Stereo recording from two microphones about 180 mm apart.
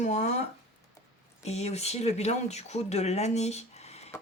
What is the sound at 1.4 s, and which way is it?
Speech, 35° left (ahead or behind).